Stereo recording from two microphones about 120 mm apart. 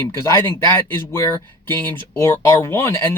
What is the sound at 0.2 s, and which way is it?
Speech, 25° left (ahead or behind).